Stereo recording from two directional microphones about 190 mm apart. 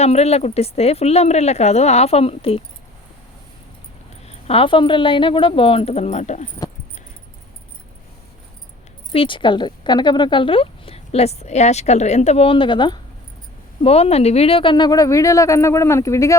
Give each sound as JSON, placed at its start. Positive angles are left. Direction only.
{"t": 0.0, "sound": "speech", "side_deg": 35}
{"t": 4.3, "sound": "speech", "side_deg": 30}
{"t": 9.1, "sound": "speech", "side_deg": 25}